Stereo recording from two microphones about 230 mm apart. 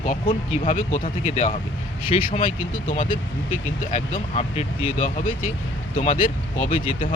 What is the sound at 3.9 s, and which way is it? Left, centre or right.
Speech, left.